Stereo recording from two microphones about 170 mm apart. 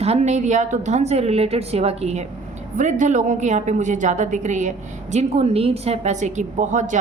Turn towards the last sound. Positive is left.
turn(degrees=-45)  # may be behind; listen again after turning